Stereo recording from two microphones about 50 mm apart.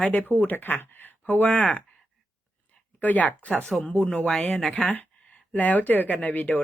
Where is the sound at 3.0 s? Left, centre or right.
Left.